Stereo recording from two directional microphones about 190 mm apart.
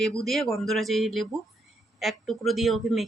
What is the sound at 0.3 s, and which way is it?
Speech, centre (ahead or behind).